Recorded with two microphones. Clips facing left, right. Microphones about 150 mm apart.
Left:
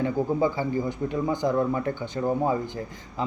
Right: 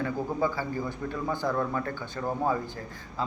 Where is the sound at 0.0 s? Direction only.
15° left (ahead or behind).